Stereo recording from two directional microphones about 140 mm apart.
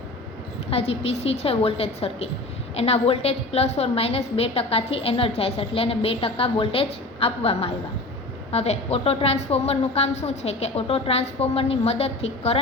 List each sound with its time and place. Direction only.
0.7 s a woman's voice: 45° left (ahead or behind)